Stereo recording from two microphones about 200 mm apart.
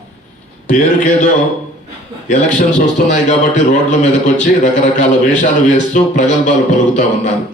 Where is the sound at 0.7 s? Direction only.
40° left (ahead or behind).